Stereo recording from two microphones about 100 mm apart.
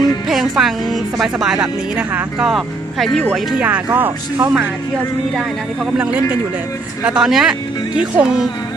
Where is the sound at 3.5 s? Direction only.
15° right (ahead or behind).